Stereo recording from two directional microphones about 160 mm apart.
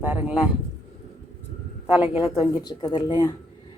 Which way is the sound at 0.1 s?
10° right (ahead or behind).